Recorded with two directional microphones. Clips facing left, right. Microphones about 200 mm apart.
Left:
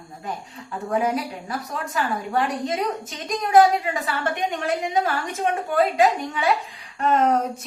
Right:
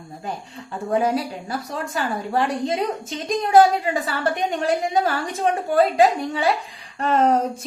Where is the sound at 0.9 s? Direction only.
30° right (ahead or behind).